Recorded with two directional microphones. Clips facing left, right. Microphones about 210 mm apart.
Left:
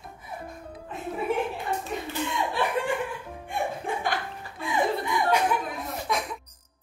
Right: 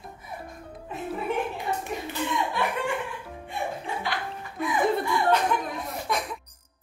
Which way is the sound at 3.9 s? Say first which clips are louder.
Left 2 dB; 50° left (ahead or behind).